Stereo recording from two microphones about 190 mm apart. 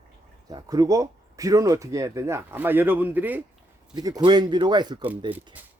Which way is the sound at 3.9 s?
20° right (ahead or behind).